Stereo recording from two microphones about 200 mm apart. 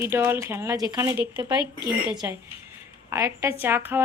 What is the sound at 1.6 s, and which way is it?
Speech, 25° left (ahead or behind).